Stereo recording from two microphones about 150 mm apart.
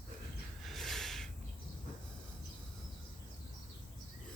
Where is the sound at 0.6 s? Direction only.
Centre (ahead or behind).